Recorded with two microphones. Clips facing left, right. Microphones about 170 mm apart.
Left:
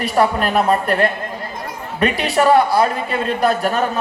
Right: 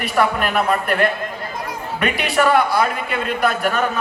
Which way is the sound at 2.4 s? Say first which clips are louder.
Left 3 dB; 35° left (ahead or behind).